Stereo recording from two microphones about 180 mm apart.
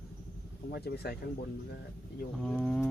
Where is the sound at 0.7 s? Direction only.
60° left (ahead or behind).